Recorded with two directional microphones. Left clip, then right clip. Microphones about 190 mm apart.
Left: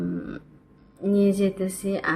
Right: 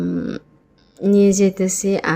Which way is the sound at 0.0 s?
30° right (ahead or behind).